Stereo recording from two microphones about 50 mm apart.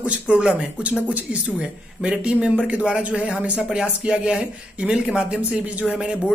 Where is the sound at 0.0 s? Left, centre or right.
Right.